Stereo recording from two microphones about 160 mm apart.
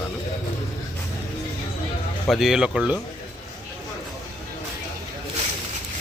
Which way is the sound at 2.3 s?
Centre (ahead or behind).